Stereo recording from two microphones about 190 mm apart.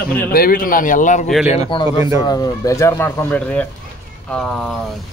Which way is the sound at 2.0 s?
20° right (ahead or behind).